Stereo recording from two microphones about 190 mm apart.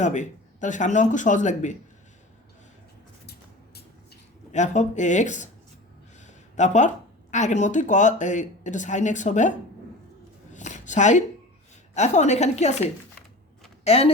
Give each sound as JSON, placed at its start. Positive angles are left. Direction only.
{"t": 0.0, "sound": "speech", "side_deg": 40}
{"t": 4.5, "sound": "a woman's voice", "side_deg": 40}
{"t": 10.5, "sound": "a sound", "side_deg": 40}
{"t": 11.9, "sound": "speech", "side_deg": 35}